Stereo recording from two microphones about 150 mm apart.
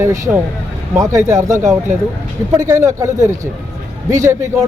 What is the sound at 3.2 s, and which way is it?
Speech, 55° right (ahead or behind).